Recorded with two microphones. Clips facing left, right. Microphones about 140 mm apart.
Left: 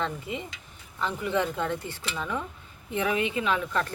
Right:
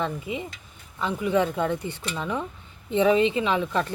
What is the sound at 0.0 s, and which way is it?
Speech, 10° right (ahead or behind).